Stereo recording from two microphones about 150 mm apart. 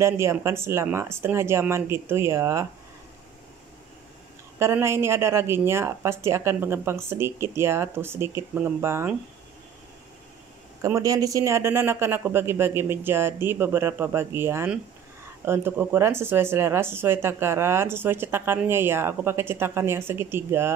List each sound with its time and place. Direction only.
0.0 s speech: 20° right (ahead or behind)
4.6 s speech: 20° right (ahead or behind)
10.8 s speech: 25° right (ahead or behind)